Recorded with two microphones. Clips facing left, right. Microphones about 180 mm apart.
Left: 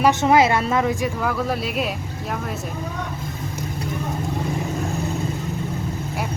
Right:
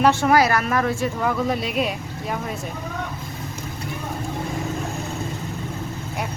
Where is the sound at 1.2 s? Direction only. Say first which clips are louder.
Right 1 dB; centre (ahead or behind).